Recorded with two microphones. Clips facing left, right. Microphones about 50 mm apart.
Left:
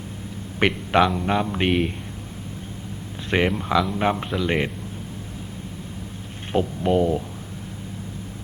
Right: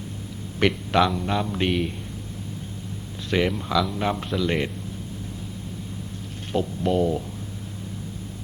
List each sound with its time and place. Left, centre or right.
0.6 s speech: left
3.2 s speech: left
6.5 s speech: left